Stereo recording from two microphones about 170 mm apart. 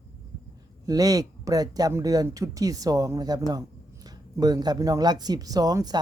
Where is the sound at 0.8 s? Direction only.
20° right (ahead or behind).